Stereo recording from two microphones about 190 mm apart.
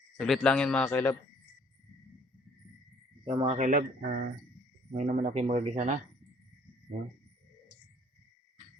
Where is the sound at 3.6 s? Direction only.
45° right (ahead or behind).